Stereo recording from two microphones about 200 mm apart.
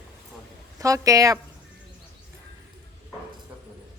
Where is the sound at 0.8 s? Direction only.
15° right (ahead or behind).